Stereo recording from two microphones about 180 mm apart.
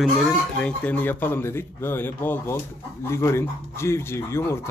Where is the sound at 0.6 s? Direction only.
10° left (ahead or behind).